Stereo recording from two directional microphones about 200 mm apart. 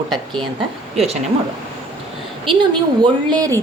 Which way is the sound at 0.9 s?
30° right (ahead or behind).